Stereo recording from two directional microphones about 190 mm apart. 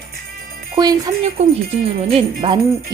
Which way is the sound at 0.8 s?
20° right (ahead or behind).